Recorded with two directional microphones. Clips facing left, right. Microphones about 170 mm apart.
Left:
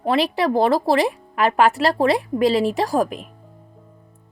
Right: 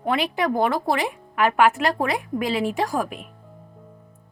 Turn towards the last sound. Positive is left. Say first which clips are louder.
# left 4 dB
turn(degrees=35)  # may be behind; listen again after turning